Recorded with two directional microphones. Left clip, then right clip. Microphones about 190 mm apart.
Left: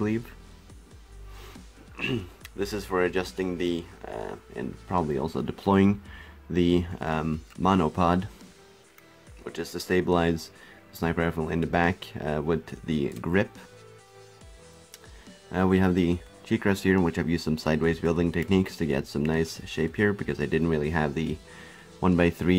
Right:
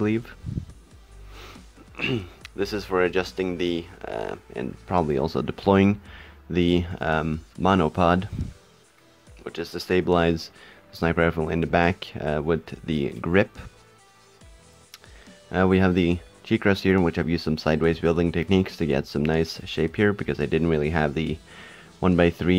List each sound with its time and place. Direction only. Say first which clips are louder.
2.0 s speech: right 3 dB; 15° right (ahead or behind)
9.4 s speech: right 3 dB; 10° right (ahead or behind)
15.5 s speech: right 4 dB; 15° right (ahead or behind)